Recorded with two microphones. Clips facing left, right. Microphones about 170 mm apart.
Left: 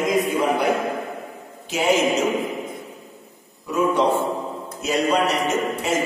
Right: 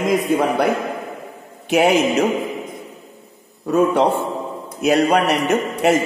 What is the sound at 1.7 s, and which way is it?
Speech, 60° right (ahead or behind).